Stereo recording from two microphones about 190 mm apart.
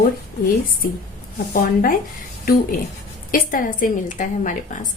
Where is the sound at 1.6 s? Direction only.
50° left (ahead or behind).